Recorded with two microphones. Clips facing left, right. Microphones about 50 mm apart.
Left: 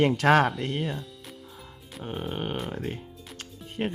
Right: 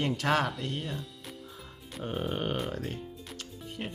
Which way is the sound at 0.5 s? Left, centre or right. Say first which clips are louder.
Left 5 dB; left.